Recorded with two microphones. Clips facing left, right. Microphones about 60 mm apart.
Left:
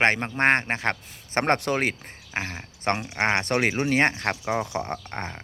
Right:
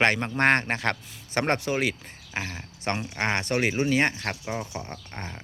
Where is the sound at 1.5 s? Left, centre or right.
Left.